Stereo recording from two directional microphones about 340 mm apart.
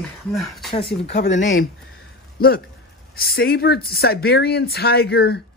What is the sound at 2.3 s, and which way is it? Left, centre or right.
Speech, left.